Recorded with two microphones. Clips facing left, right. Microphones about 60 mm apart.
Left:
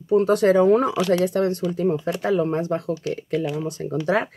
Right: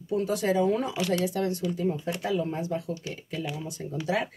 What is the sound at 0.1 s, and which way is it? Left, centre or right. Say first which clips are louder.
Speech: left 9 dB; left.